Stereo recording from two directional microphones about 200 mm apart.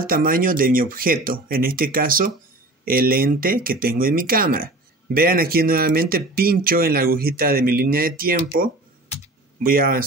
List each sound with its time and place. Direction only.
0.0 s speech: 45° right (ahead or behind)
9.7 s speech: 45° right (ahead or behind)